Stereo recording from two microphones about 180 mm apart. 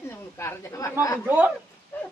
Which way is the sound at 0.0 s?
15° left (ahead or behind).